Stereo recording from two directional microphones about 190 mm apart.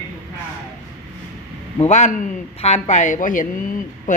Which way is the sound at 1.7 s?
35° left (ahead or behind).